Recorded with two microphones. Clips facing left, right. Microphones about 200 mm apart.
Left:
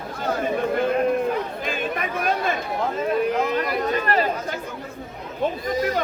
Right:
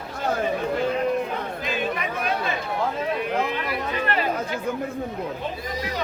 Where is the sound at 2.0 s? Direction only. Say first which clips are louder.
Left 2 dB; 50° left (ahead or behind).